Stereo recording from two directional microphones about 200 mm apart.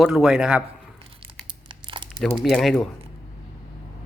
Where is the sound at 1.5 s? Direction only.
25° right (ahead or behind).